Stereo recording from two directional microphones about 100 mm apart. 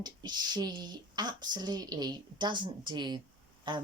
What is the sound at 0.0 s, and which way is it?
Speech, 45° right (ahead or behind).